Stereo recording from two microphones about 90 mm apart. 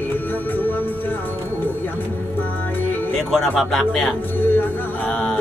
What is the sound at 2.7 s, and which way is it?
Music, 20° left (ahead or behind).